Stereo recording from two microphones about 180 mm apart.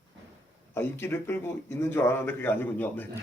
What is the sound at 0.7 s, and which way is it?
Speech, 15° left (ahead or behind).